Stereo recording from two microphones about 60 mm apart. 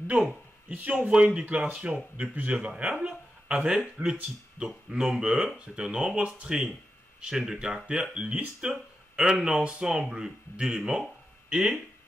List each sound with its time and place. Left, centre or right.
0.7 s speech: right